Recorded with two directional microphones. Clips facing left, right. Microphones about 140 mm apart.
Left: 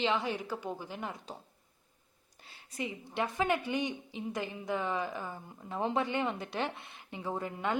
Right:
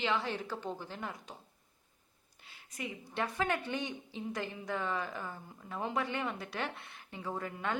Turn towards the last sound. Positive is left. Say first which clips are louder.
# left 3 dB
turn(degrees=20)  # may be behind; listen again after turning